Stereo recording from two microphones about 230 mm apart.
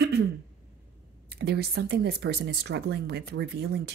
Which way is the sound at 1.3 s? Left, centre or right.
Right.